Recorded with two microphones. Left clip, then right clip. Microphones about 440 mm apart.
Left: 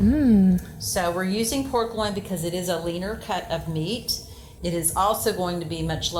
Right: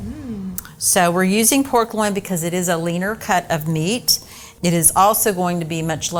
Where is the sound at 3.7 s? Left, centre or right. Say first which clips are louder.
Right 7 dB; right.